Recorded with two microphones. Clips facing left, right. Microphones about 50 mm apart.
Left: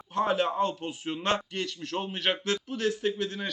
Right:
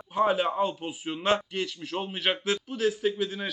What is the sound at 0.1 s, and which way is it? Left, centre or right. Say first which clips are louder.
A man's voice: right 2 dB; centre.